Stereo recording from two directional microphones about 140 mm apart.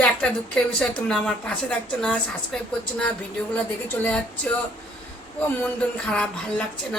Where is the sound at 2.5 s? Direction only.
5° left (ahead or behind).